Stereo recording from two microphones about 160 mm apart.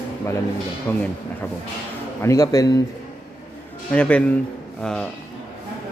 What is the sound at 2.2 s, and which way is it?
Speech, 20° left (ahead or behind).